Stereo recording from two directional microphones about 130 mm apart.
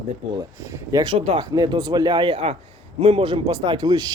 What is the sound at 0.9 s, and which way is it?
Speech, 40° right (ahead or behind).